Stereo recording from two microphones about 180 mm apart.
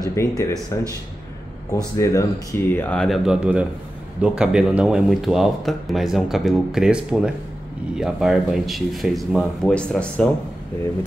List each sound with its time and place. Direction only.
0.0 s a sound: 15° left (ahead or behind)
0.4 s speech: 20° left (ahead or behind)
2.0 s speech: 15° left (ahead or behind)